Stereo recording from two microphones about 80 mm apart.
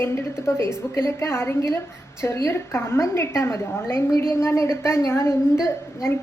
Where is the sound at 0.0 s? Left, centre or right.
Left.